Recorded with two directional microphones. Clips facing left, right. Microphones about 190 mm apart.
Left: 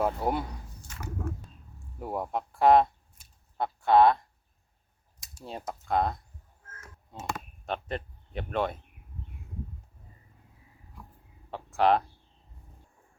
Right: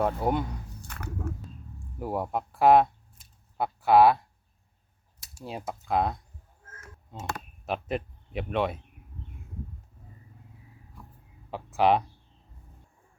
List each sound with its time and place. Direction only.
0.0 s speech: centre (ahead or behind)
0.9 s a sound: 60° right (ahead or behind)
2.0 s speech: centre (ahead or behind)
5.2 s speech: 5° right (ahead or behind)
11.5 s speech: centre (ahead or behind)